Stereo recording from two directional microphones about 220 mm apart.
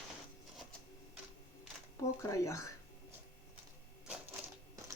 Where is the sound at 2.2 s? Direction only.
15° left (ahead or behind).